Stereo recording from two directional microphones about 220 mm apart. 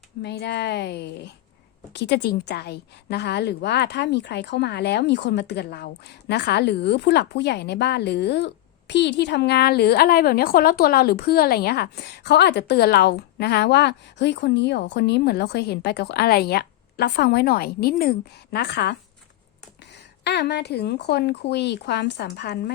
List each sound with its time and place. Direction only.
0.2 s a woman's voice: 50° left (ahead or behind)